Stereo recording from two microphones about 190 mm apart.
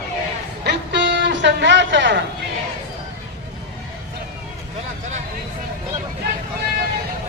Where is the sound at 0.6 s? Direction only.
65° right (ahead or behind).